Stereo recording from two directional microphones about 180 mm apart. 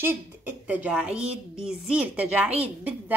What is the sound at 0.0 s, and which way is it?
A woman's voice, 10° right (ahead or behind).